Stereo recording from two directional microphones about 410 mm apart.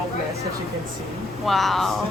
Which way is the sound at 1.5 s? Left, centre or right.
Centre.